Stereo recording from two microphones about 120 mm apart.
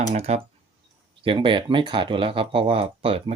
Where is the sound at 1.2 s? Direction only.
45° right (ahead or behind).